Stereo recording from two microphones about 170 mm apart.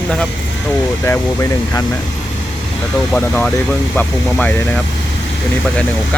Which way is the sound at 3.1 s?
10° left (ahead or behind).